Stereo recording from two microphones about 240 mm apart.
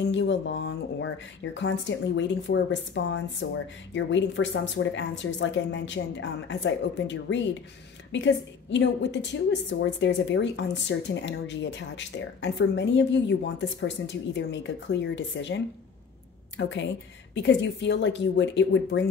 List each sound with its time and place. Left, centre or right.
0.1 s a woman's voice: left